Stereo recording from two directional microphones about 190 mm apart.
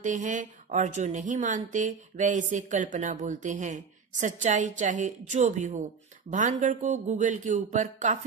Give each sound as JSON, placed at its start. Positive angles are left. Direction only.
{"t": 0.0, "sound": "speech", "side_deg": -40}